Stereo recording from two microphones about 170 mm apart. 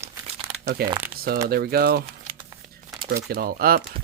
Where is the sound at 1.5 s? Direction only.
60° right (ahead or behind).